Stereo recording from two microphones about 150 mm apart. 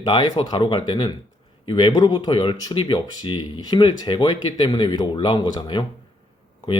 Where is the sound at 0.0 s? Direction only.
30° left (ahead or behind).